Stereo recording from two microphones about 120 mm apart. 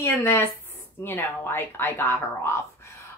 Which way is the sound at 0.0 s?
20° left (ahead or behind).